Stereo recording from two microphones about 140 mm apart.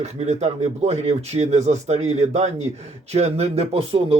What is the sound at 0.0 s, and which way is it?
Speech, 50° right (ahead or behind).